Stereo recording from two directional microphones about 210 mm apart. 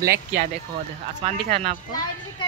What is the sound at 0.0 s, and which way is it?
Speech, 45° right (ahead or behind).